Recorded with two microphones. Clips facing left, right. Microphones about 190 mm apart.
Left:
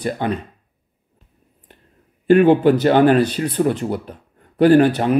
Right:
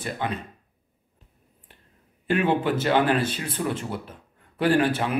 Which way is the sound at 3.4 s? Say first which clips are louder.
Left 10 dB; 55° left (ahead or behind).